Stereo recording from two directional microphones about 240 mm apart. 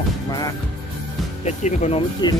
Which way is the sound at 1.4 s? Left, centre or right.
Left.